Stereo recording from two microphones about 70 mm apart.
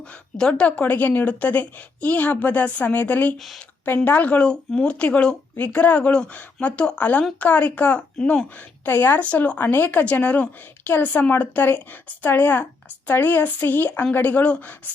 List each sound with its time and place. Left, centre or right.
0.3 s a woman's voice: centre
3.3 s speech: centre
3.8 s a woman's voice: left
8.8 s a woman's voice: left